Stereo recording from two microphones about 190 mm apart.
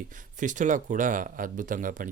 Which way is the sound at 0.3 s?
40° right (ahead or behind).